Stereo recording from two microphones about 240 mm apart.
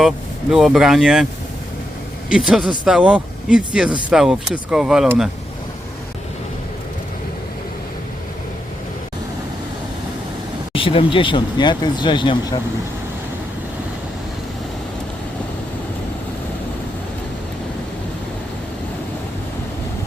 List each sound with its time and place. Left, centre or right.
0.5 s speech: centre
2.3 s speech: centre
10.7 s speech: left